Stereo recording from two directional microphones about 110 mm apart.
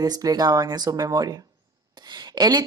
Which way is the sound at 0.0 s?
35° right (ahead or behind).